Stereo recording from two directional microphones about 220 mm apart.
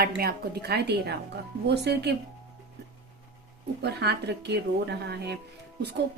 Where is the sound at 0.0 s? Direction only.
45° right (ahead or behind).